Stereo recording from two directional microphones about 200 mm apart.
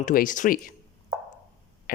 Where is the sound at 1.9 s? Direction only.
45° left (ahead or behind).